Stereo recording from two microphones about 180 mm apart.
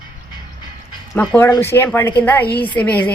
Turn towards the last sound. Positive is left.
turn(degrees=10)  # may be behind; listen again after turning